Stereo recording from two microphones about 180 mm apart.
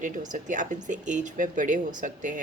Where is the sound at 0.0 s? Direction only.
45° right (ahead or behind).